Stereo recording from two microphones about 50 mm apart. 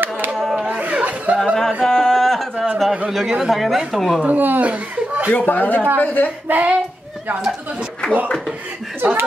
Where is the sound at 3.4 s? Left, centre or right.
Centre.